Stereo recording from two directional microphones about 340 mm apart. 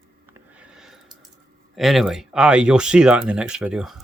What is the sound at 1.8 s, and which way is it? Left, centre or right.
Speech, centre.